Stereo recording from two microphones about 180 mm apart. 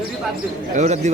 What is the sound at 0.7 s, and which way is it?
Speech, 40° right (ahead or behind).